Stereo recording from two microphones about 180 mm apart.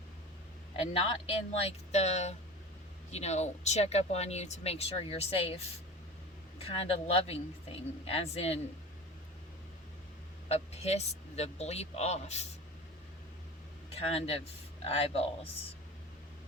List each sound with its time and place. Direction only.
1.0 s speech: 30° left (ahead or behind)
6.6 s speech: 35° left (ahead or behind)
10.5 s speech: 35° left (ahead or behind)
13.9 s speech: 35° left (ahead or behind)